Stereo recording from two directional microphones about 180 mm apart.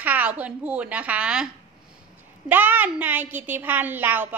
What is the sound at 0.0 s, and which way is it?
A woman's voice, 10° right (ahead or behind).